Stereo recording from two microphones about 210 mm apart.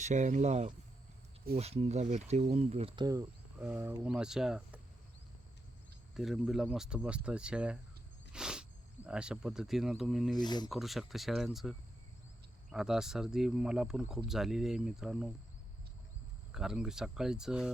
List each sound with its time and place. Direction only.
0.0 s speech: 35° right (ahead or behind); by 3.2 s 20° right (ahead or behind)
3.6 s speech: 5° right (ahead or behind)
6.1 s speech: centre (ahead or behind)
8.3 s a sound: 5° right (ahead or behind)
9.0 s speech: 5° right (ahead or behind)
10.3 s speech: 20° left (ahead or behind)
10.7 s speech: centre (ahead or behind)
16.5 s speech: centre (ahead or behind)